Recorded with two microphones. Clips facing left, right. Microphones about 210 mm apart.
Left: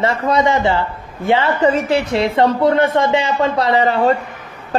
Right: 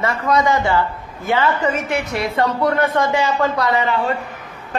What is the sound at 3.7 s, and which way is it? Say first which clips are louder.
Speech: left 5 dB; 40° left (ahead or behind).